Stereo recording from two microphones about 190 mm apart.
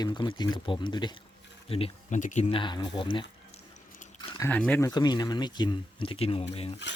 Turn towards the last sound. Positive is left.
turn(degrees=35)  # may be behind; listen again after turning